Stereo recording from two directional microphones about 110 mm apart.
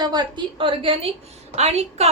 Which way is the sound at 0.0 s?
40° right (ahead or behind).